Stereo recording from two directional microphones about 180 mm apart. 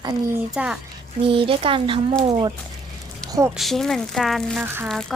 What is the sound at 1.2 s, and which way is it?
Speech, 30° right (ahead or behind).